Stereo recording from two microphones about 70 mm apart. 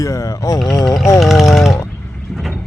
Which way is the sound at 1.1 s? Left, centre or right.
Centre.